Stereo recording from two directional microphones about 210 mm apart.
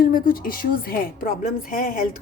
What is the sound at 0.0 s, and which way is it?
A woman's voice, 40° left (ahead or behind).